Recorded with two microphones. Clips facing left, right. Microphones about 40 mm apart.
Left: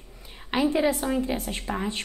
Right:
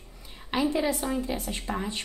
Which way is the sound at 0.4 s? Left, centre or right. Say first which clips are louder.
Left 3 dB; centre.